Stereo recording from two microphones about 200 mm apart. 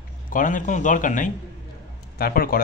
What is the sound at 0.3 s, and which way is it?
A man's voice, 40° left (ahead or behind).